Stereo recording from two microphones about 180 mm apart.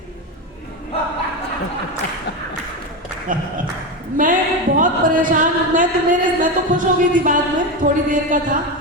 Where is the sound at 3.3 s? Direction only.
50° right (ahead or behind).